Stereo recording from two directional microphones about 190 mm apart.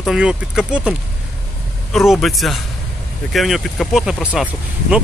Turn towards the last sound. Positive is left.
turn(degrees=-5)  # may be behind; listen again after turning